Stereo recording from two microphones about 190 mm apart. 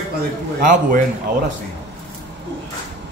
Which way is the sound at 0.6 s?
45° right (ahead or behind).